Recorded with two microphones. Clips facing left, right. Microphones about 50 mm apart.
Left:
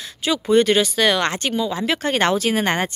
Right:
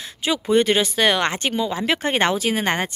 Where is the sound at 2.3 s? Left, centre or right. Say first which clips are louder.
Left 2 dB; centre.